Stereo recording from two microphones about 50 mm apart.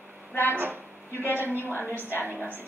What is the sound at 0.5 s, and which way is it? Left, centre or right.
Speech, right.